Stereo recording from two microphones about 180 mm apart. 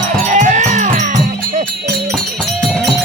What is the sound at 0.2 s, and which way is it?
Music, 45° right (ahead or behind).